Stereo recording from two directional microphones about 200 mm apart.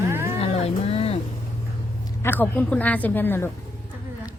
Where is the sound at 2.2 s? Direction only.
10° left (ahead or behind).